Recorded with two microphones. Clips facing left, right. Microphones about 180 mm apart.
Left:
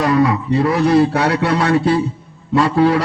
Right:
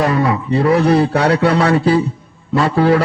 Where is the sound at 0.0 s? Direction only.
60° right (ahead or behind).